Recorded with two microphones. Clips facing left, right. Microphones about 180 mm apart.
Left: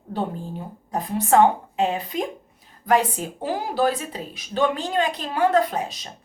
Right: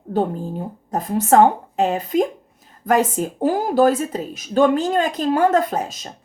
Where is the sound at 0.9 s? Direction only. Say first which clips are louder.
Right 4 dB; 45° right (ahead or behind).